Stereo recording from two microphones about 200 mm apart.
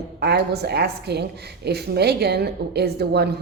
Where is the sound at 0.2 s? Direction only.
55° right (ahead or behind).